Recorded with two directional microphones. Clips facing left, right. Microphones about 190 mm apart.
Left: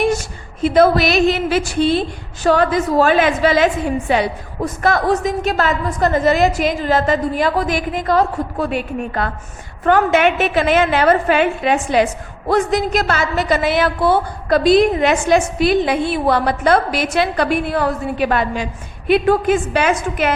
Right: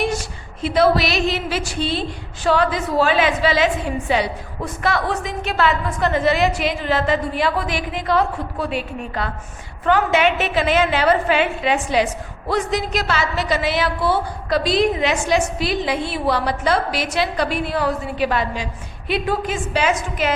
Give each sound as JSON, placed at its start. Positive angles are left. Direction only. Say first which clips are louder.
{"t": 0.0, "sound": "a woman's voice", "louder": "left 5 dB", "side_deg": 50}